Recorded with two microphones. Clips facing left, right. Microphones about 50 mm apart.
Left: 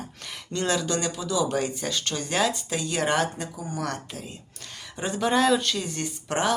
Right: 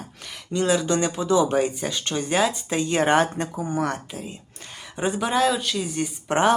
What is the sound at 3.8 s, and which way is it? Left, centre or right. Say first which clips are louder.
Speech: right 5 dB; centre.